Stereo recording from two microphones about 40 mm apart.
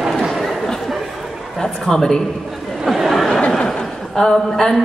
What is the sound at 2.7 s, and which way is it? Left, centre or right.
Chatter, centre.